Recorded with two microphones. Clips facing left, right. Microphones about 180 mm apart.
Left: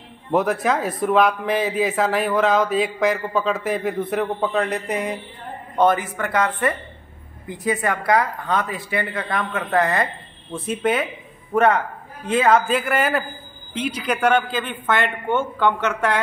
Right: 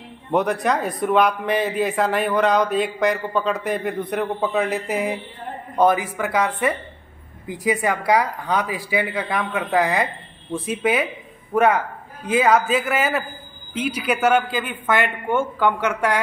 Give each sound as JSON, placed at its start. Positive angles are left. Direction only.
{"t": 0.3, "sound": "a man's voice", "side_deg": 0}